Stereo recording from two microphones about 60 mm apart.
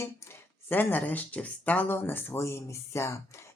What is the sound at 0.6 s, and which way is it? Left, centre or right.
Speech, left.